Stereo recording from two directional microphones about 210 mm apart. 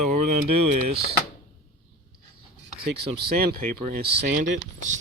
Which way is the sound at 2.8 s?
50° right (ahead or behind).